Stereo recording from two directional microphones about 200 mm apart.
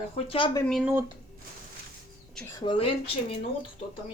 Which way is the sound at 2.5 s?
20° left (ahead or behind).